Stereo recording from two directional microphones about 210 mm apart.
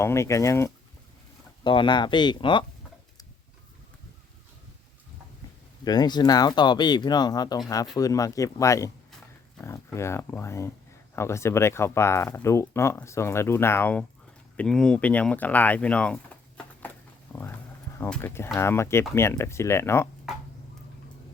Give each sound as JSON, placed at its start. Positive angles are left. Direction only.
{"t": 0.0, "sound": "speech", "side_deg": 15}
{"t": 5.8, "sound": "speech", "side_deg": 20}
{"t": 17.3, "sound": "clip-clop", "side_deg": 5}
{"t": 17.9, "sound": "speech", "side_deg": 10}